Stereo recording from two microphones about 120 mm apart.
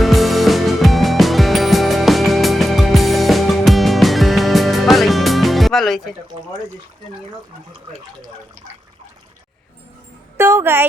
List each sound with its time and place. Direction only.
0.0 s music: centre (ahead or behind)
10.3 s a woman's voice: 20° right (ahead or behind)